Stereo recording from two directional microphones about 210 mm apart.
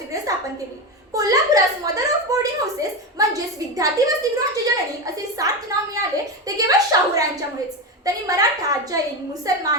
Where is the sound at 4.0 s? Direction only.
15° right (ahead or behind).